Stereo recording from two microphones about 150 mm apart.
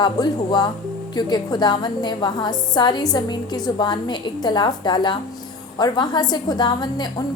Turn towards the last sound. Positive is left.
turn(degrees=30)  # may be behind; listen again after turning